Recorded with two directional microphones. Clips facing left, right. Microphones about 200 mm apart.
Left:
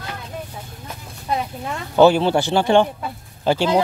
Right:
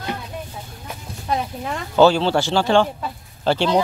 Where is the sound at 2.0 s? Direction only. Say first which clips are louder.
Left 1 dB; 15° left (ahead or behind).